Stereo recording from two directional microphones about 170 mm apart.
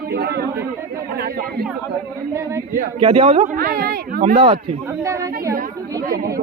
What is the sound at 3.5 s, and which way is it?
Speech, 60° right (ahead or behind).